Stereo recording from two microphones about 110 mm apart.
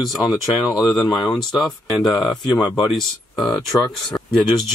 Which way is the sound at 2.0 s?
40° left (ahead or behind).